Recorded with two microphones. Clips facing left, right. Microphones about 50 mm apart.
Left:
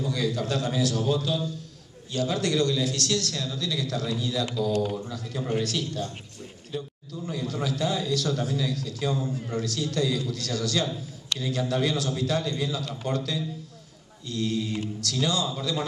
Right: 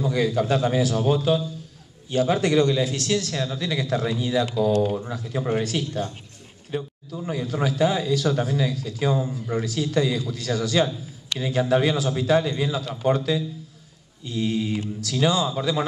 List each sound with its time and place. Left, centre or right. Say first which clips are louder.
0.0 s a man's voice: right 5 dB; right
6.7 s a man's voice: right 5 dB; right